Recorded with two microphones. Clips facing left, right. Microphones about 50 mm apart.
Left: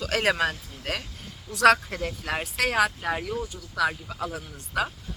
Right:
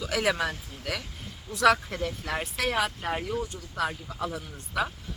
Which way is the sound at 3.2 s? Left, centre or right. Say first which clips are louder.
Even; centre.